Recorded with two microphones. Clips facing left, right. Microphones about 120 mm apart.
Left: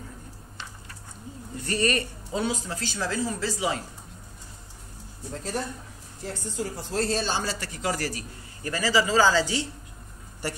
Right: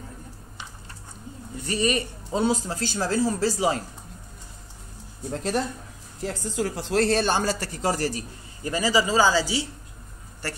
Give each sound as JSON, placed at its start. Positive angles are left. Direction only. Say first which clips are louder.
{"t": 1.6, "sound": "speech", "louder": "right 1 dB", "side_deg": -10}
{"t": 2.3, "sound": "speech", "louder": "right 5 dB", "side_deg": -35}
{"t": 5.3, "sound": "speech", "louder": "right 5 dB", "side_deg": -80}
{"t": 6.2, "sound": "speech", "louder": "right 5 dB", "side_deg": -90}
{"t": 10.4, "sound": "speech", "louder": "left 2 dB", "side_deg": 15}